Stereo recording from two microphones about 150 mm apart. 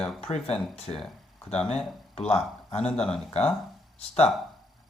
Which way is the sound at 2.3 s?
45° left (ahead or behind).